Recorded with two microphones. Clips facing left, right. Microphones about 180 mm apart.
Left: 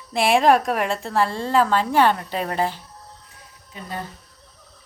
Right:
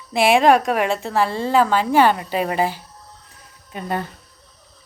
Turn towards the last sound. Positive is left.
turn(degrees=-65)  # may be behind; listen again after turning